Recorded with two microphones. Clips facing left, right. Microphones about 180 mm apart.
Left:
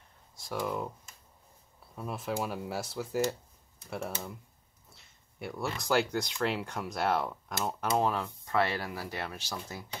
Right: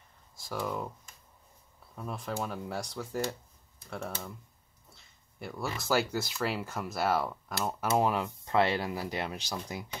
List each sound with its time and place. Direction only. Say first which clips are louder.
0.4 s speech: left 1 dB; centre (ahead or behind)
2.0 s speech: left 2 dB; 5° left (ahead or behind); by 9.8 s 15° right (ahead or behind)